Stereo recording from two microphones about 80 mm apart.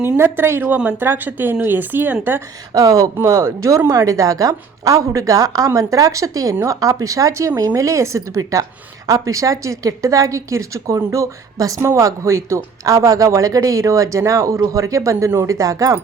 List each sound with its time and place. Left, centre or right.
0.2 s speech: right
2.7 s a woman's voice: right